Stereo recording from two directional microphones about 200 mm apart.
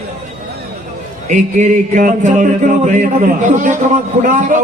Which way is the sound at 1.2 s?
35° right (ahead or behind).